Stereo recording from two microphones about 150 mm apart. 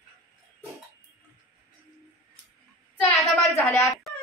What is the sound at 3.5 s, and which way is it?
Speech, 20° left (ahead or behind).